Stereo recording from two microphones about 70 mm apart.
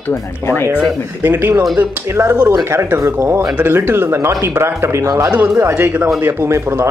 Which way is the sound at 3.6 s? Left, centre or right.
Right.